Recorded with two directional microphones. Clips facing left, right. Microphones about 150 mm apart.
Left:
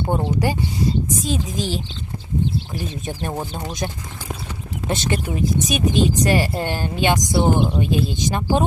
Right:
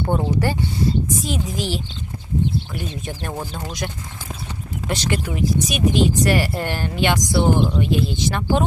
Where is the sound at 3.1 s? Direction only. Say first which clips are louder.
Left 2 dB; 20° left (ahead or behind).